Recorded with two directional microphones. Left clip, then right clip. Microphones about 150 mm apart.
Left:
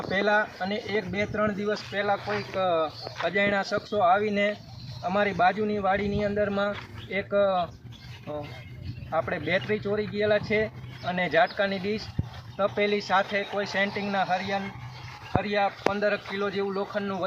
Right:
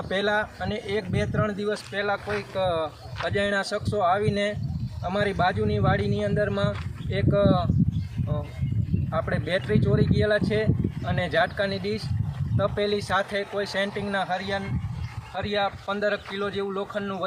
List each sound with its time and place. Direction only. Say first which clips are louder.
0.1 s speech: left 1 dB; 15° right (ahead or behind)
9.1 s speech: even; 20° right (ahead or behind)
15.4 s a man's voice: even; 5° right (ahead or behind)